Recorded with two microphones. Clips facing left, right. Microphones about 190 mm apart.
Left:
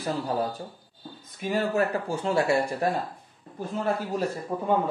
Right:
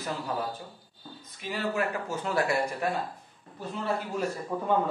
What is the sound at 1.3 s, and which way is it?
Speech, 50° left (ahead or behind).